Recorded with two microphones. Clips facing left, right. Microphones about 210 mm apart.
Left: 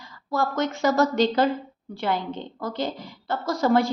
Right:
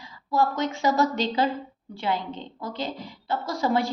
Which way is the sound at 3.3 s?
50° left (ahead or behind).